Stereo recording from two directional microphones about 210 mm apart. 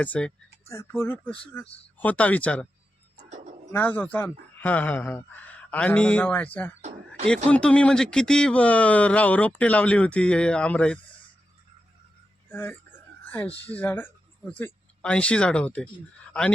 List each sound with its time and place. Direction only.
0.0 s speech: 5° left (ahead or behind)
3.2 s music: 30° right (ahead or behind)
3.7 s speech: 10° left (ahead or behind)
12.5 s speech: 10° left (ahead or behind)